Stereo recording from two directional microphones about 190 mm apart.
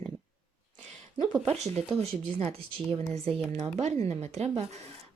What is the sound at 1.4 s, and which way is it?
Speech, 35° right (ahead or behind).